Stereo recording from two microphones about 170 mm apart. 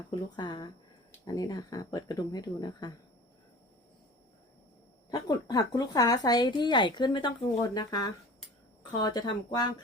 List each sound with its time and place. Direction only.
0.1 s speech: 25° left (ahead or behind)
5.1 s speech: 20° left (ahead or behind)